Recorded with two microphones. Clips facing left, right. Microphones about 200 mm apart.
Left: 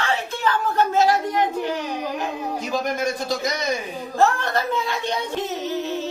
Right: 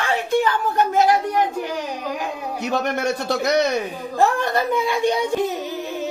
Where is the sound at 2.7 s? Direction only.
65° right (ahead or behind).